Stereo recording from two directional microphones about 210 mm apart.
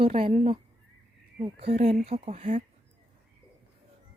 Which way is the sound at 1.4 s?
25° right (ahead or behind).